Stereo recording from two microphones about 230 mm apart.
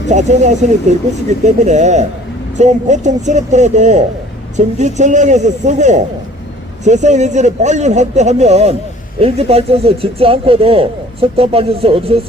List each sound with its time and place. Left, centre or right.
0.1 s speech: right